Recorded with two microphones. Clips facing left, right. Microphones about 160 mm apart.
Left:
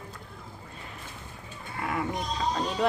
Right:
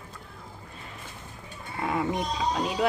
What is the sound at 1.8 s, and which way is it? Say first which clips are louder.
Speech: right 3 dB; 20° right (ahead or behind).